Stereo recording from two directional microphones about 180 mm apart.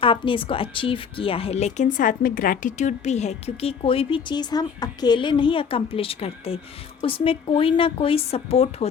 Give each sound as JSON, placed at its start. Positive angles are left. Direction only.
{"t": 0.0, "sound": "a woman's voice", "side_deg": 30}